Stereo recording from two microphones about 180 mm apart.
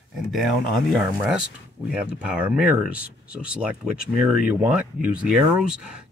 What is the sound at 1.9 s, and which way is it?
Speech, 5° right (ahead or behind).